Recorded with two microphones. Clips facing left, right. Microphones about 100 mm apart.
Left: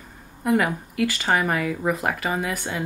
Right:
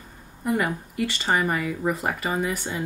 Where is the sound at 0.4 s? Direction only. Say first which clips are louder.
Left 3 dB; 70° left (ahead or behind).